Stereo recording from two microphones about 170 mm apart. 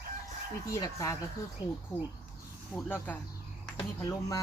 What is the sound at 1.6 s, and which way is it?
Speech, 10° right (ahead or behind).